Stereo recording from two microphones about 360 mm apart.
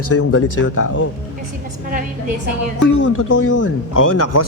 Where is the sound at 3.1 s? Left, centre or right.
Left.